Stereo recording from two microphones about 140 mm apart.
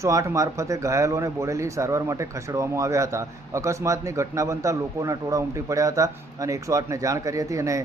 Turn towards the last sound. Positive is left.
turn(degrees=-20)  # may be behind; listen again after turning